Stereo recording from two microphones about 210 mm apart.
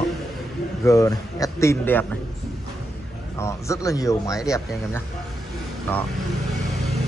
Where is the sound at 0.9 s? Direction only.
15° left (ahead or behind).